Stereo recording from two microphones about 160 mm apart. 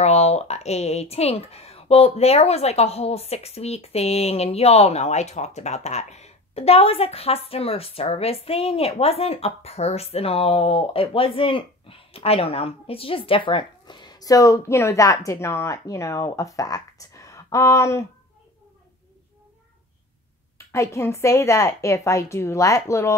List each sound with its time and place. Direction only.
0.0 s speech: 45° left (ahead or behind); by 18.0 s 20° left (ahead or behind)
20.5 s a woman's voice: 20° left (ahead or behind)